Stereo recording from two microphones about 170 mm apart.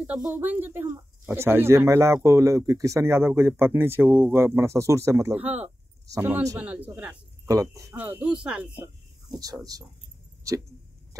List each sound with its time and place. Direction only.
0.2 s speech: 10° right (ahead or behind)
7.4 s speech: 20° right (ahead or behind)
7.9 s speech: 5° right (ahead or behind)
9.3 s speech: 20° right (ahead or behind)